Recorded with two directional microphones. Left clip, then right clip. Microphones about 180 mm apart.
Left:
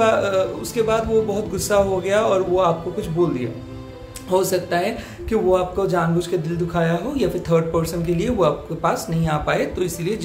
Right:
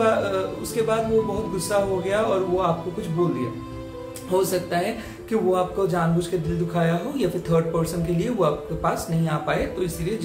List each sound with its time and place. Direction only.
0.0 s music: 35° left (ahead or behind)
0.8 s speech: 35° left (ahead or behind)
4.3 s speech: 30° left (ahead or behind)